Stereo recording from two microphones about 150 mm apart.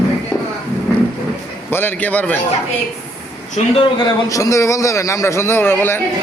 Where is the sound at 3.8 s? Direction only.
25° left (ahead or behind).